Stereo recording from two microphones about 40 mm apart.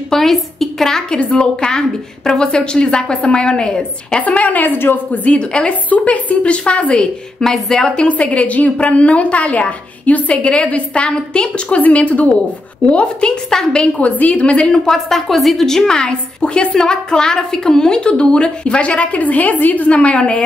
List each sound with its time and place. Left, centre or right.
0.1 s a sound: centre
1.1 s a woman's voice: left
4.2 s a woman's voice: left
5.1 s a woman's voice: left
5.9 s a woman's voice: left
7.4 s a woman's voice: centre
8.1 s a woman's voice: left
13.5 s a woman's voice: centre
13.9 s a woman's voice: left
14.9 s a woman's voice: centre
16.3 s a woman's voice: left
19.2 s a woman's voice: left
19.9 s a woman's voice: left